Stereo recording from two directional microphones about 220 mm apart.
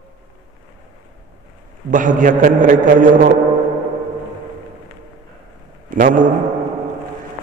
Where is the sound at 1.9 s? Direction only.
35° right (ahead or behind).